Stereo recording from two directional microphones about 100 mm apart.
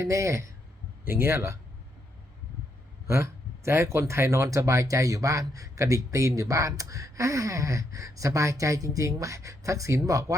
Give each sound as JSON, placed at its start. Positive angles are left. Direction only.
{"t": 0.0, "sound": "speech", "side_deg": -30}
{"t": 3.1, "sound": "speech", "side_deg": -25}